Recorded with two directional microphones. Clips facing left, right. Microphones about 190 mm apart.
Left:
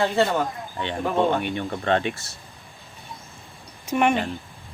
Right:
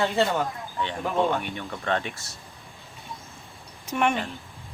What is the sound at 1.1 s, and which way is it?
Speech, 20° left (ahead or behind).